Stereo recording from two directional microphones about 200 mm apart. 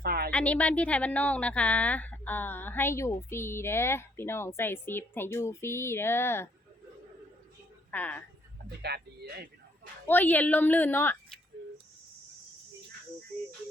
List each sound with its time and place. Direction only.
0.0 s a sound: 50° right (ahead or behind)
0.3 s a woman's voice: 5° left (ahead or behind)
7.9 s a woman's voice: 10° left (ahead or behind)
8.8 s speech: 55° right (ahead or behind)
10.1 s a woman's voice: 10° left (ahead or behind)